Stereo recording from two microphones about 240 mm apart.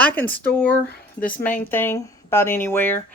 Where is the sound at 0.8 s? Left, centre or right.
Left.